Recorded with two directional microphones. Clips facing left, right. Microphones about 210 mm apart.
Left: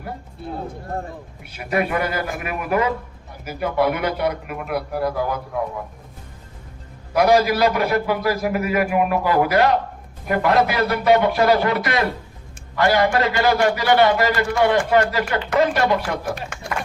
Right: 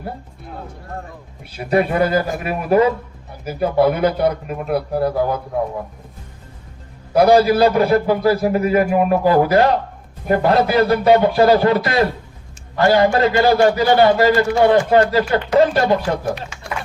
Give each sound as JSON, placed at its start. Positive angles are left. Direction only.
{"t": 1.5, "sound": "a man's voice", "side_deg": -30}
{"t": 7.1, "sound": "a man's voice", "side_deg": -30}
{"t": 16.5, "sound": "run", "side_deg": 55}